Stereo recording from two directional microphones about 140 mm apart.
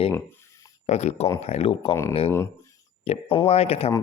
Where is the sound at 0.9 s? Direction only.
50° left (ahead or behind).